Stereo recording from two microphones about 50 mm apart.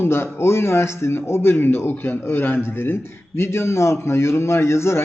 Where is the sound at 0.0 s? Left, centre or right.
Left.